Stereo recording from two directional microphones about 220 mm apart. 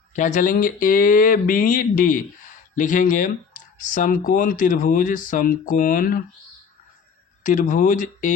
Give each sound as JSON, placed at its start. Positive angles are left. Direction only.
{"t": 0.1, "sound": "speech", "side_deg": 35}
{"t": 7.4, "sound": "speech", "side_deg": 35}